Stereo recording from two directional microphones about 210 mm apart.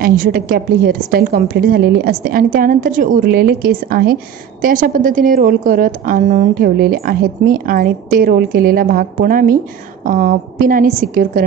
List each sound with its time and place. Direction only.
0.0 s a woman's voice: 45° right (ahead or behind)